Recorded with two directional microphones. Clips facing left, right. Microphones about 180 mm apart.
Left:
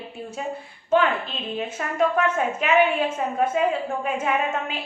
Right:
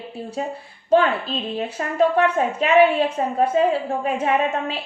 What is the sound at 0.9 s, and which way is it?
A woman's voice, 35° right (ahead or behind).